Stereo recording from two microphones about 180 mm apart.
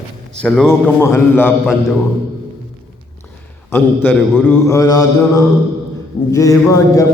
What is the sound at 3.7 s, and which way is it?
Mantra, 10° left (ahead or behind).